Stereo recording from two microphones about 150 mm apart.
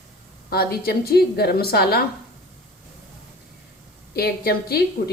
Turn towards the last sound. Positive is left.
turn(degrees=90)